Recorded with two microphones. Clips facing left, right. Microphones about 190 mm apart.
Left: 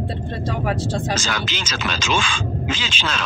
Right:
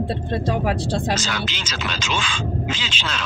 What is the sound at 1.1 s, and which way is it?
Speech, 50° left (ahead or behind).